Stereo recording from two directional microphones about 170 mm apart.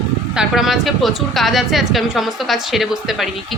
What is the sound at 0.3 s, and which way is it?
A woman's voice, centre (ahead or behind).